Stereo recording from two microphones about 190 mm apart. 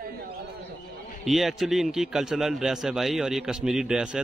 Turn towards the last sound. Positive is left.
turn(degrees=-5)  # may be behind; listen again after turning